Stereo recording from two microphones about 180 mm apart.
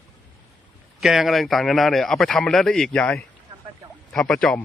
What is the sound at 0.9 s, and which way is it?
Speech, centre (ahead or behind).